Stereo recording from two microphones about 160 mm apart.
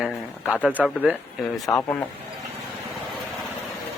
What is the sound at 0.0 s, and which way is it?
Speech, centre (ahead or behind).